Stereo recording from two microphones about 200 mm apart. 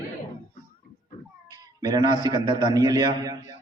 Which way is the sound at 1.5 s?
20° right (ahead or behind).